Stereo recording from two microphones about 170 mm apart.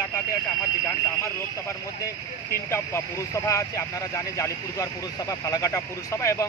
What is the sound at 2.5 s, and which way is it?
Speech, 15° left (ahead or behind).